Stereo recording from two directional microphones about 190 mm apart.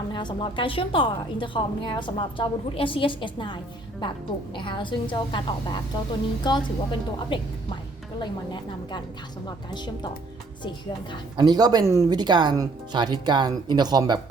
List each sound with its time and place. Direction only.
0.1 s a woman's voice: 25° left (ahead or behind)
8.2 s a woman's voice: 25° left (ahead or behind)
11.3 s speech: 20° right (ahead or behind)